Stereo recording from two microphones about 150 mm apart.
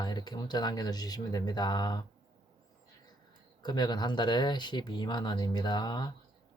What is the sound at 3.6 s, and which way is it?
Speech, 30° left (ahead or behind).